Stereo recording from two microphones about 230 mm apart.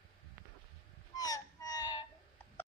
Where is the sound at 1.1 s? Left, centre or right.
Centre.